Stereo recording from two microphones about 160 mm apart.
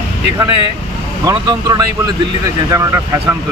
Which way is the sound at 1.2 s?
25° right (ahead or behind).